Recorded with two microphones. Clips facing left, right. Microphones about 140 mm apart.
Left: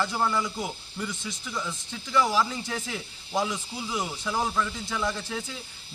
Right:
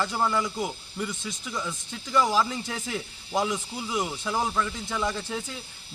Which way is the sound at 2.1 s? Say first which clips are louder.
Right 1 dB; 15° right (ahead or behind).